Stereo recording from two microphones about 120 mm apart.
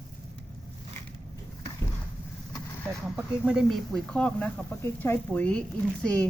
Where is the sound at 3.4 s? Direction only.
Centre (ahead or behind).